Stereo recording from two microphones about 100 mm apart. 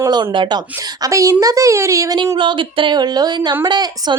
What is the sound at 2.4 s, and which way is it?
Speech, 55° right (ahead or behind).